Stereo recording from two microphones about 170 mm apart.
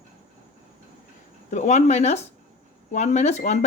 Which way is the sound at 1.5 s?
45° left (ahead or behind).